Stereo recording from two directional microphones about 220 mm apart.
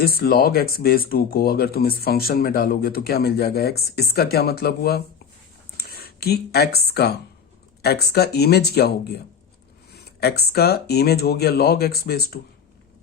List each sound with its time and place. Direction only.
0.0 s speech: 45° left (ahead or behind)